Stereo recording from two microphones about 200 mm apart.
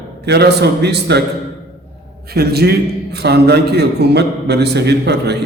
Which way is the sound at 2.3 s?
50° right (ahead or behind).